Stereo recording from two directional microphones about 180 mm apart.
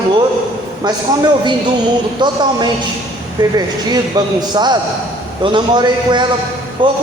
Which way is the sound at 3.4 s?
20° right (ahead or behind).